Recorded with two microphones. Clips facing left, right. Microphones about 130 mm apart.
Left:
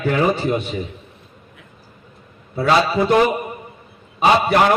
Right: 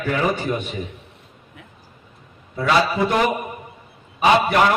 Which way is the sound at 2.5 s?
35° left (ahead or behind).